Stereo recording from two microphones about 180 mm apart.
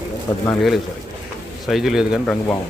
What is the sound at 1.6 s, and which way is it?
Speech, centre (ahead or behind).